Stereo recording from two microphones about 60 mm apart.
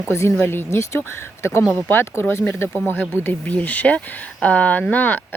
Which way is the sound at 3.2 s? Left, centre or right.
Left.